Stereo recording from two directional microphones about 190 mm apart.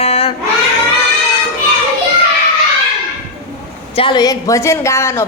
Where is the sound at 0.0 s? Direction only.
30° left (ahead or behind).